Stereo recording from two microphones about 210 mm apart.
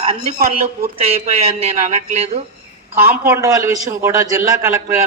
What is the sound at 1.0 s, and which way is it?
Speech, 30° right (ahead or behind).